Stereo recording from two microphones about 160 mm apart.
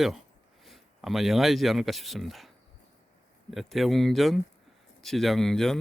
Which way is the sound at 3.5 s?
Centre (ahead or behind).